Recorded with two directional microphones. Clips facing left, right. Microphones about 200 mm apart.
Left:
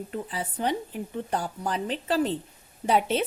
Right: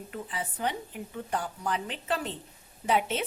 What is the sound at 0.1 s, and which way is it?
A woman's voice, 35° left (ahead or behind).